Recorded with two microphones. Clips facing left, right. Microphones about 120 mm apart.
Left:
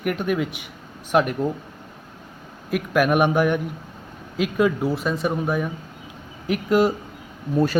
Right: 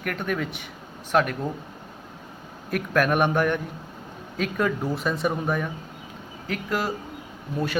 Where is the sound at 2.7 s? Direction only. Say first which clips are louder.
Left 3 dB; 10° left (ahead or behind).